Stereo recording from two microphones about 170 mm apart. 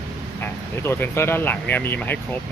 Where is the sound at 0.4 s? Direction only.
15° left (ahead or behind).